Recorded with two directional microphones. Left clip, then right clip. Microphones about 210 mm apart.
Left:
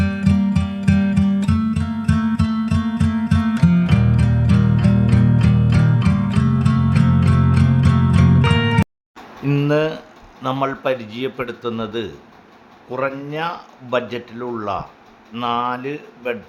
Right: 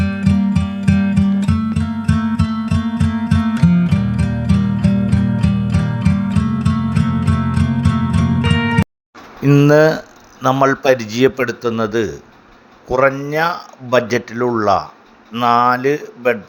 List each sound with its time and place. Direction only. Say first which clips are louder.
0.0 s music: right 2 dB; centre (ahead or behind)
9.6 s speech: right 8 dB; 35° right (ahead or behind)